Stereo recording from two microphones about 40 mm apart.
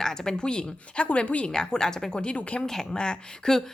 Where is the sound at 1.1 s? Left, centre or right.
Left.